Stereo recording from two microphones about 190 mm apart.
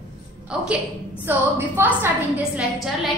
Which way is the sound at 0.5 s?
5° right (ahead or behind).